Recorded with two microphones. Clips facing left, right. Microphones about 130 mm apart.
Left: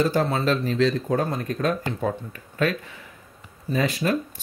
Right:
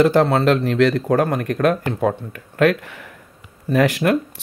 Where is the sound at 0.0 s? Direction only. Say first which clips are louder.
Right 7 dB; 65° right (ahead or behind).